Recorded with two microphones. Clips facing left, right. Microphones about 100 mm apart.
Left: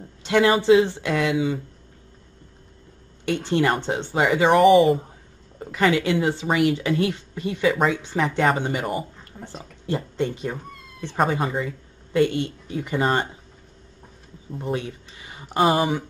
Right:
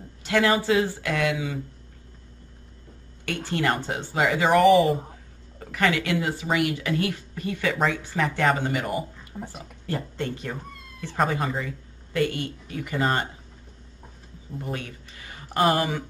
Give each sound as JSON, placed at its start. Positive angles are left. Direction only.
{"t": 0.2, "sound": "speech", "side_deg": 20}
{"t": 3.3, "sound": "speech", "side_deg": 20}
{"t": 4.7, "sound": "speech", "side_deg": 0}
{"t": 5.6, "sound": "speech", "side_deg": 20}
{"t": 14.6, "sound": "speech", "side_deg": 20}